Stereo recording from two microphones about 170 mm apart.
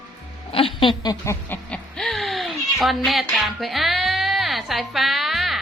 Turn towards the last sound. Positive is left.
turn(degrees=0)  # may be behind; listen again after turning